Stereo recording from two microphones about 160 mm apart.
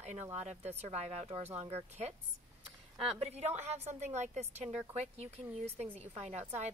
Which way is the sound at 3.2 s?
45° right (ahead or behind).